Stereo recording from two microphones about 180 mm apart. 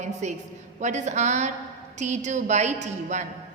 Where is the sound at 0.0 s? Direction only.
40° right (ahead or behind).